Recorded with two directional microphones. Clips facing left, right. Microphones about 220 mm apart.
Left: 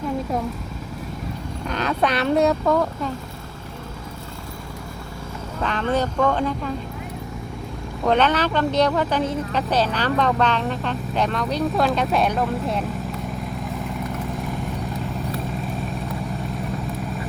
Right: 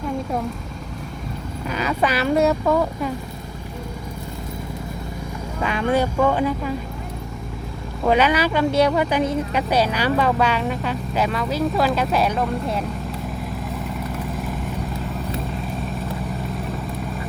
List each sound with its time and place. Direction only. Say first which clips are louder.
1.6 s speech: even; 5° right (ahead or behind)
5.5 s speech: right 2 dB; 10° right (ahead or behind)
8.0 s speech: right 1 dB; 5° right (ahead or behind)
13.6 s vehicle: even; centre (ahead or behind)